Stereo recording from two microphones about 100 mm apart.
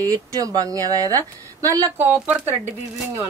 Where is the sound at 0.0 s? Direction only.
35° right (ahead or behind).